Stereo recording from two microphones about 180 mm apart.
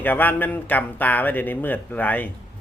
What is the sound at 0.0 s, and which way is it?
Speech, 10° left (ahead or behind).